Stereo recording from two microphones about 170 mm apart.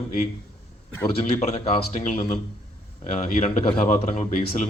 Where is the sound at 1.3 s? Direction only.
40° left (ahead or behind).